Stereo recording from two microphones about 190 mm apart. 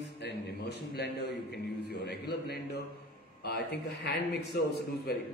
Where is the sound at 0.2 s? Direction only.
65° left (ahead or behind).